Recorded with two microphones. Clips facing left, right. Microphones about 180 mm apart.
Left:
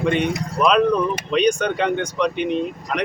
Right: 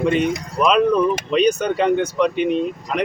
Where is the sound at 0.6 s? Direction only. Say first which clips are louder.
Right 1 dB; 5° right (ahead or behind).